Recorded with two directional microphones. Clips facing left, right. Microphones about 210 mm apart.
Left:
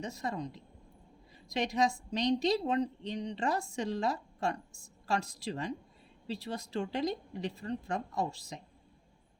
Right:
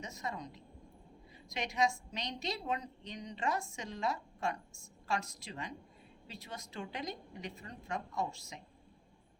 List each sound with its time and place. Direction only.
0.0 s a woman's voice: 30° left (ahead or behind)